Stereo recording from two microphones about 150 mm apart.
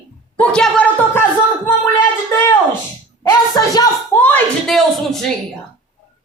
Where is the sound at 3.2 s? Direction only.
25° left (ahead or behind).